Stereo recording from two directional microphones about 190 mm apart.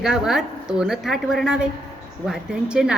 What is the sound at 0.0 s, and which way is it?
A woman's voice, centre (ahead or behind).